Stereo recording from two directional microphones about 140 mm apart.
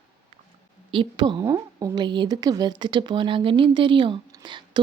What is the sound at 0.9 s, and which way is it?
A woman's voice, 35° right (ahead or behind).